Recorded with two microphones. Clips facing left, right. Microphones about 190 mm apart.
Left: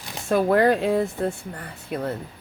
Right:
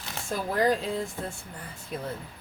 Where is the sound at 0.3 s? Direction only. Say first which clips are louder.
Left 7 dB; 65° left (ahead or behind).